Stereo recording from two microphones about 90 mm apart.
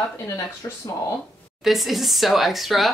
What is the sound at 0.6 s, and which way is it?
Speech, 35° left (ahead or behind).